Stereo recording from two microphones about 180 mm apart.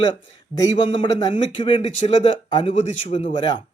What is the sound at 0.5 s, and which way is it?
Speech, 30° left (ahead or behind).